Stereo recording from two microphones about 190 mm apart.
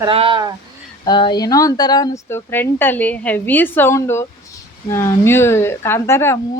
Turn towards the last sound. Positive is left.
turn(degrees=15)  # may be behind; listen again after turning